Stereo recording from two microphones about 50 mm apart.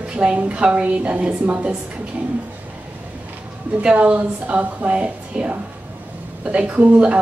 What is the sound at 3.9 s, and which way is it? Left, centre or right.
A woman's voice, right.